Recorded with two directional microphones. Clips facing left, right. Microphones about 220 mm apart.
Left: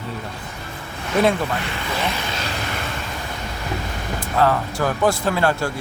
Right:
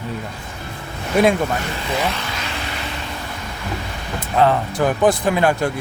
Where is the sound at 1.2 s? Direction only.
10° right (ahead or behind).